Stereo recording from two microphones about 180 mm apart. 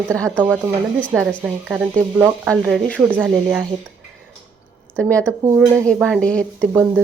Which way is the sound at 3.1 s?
10° right (ahead or behind).